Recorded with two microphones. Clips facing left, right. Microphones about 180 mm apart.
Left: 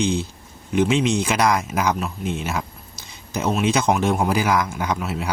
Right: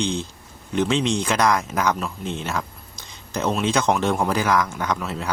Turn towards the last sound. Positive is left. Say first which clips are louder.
# left 1 dB
turn(degrees=10)  # may be behind; listen again after turning